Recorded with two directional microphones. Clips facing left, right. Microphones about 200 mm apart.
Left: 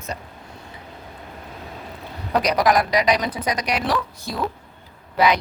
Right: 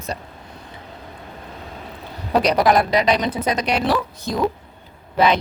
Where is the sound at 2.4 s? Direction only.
30° right (ahead or behind).